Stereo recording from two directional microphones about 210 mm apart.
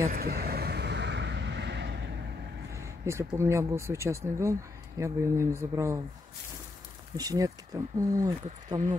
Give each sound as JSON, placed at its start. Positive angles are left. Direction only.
{"t": 0.1, "sound": "vehicle", "side_deg": -45}
{"t": 2.7, "sound": "speech", "side_deg": -15}
{"t": 7.2, "sound": "speech", "side_deg": -15}